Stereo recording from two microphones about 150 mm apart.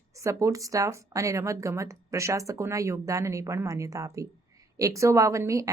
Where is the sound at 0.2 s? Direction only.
20° right (ahead or behind).